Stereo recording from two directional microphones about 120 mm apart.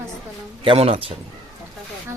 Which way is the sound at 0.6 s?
55° right (ahead or behind).